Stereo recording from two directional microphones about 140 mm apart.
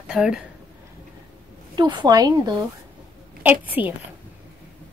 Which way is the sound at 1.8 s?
30° right (ahead or behind).